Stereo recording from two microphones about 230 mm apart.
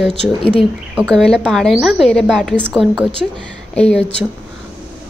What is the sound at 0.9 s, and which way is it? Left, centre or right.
A woman's voice, centre.